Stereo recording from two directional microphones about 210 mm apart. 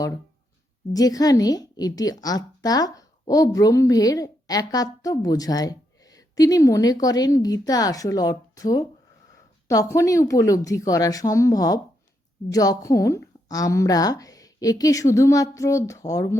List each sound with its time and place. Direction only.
0.9 s a woman's voice: 15° left (ahead or behind)